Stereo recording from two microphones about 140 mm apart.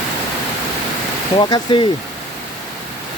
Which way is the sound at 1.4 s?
35° left (ahead or behind).